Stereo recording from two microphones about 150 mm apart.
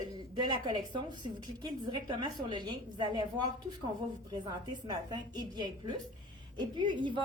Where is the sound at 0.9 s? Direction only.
30° right (ahead or behind).